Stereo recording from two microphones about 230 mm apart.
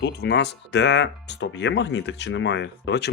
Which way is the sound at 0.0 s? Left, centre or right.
Left.